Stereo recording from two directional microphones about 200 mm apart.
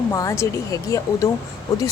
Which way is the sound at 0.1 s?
15° left (ahead or behind).